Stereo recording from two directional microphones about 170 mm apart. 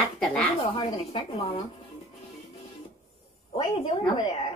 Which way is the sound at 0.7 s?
30° left (ahead or behind).